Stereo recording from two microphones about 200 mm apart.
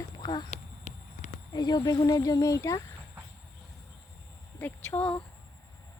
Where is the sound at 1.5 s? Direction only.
20° left (ahead or behind).